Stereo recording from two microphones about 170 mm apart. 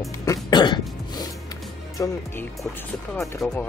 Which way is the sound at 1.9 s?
15° left (ahead or behind).